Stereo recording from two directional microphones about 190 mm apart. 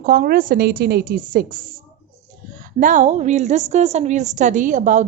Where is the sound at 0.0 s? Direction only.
50° right (ahead or behind).